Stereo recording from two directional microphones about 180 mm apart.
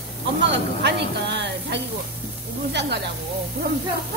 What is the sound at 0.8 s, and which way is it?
A woman's voice, 75° right (ahead or behind).